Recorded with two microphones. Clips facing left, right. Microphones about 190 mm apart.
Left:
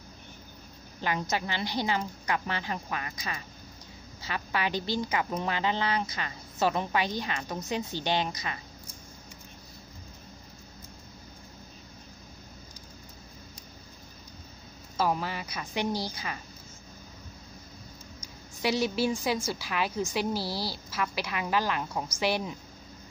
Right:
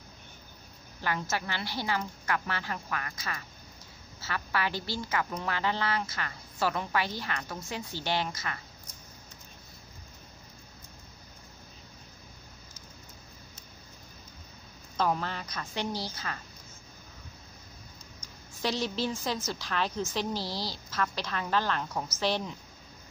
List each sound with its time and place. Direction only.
1.0 s a woman's voice: 20° left (ahead or behind)
15.0 s a woman's voice: 10° left (ahead or behind)
18.2 s a woman's voice: 10° left (ahead or behind)